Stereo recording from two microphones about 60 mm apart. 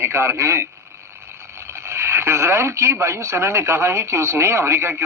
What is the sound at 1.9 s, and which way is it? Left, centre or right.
Speech, right.